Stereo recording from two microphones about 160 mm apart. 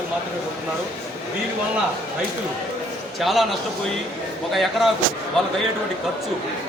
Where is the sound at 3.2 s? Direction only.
Centre (ahead or behind).